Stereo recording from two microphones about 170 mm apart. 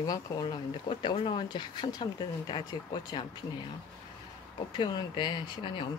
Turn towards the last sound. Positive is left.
turn(degrees=30)  # may be behind; listen again after turning